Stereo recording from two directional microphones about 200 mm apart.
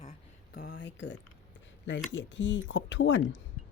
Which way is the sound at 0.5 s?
55° left (ahead or behind).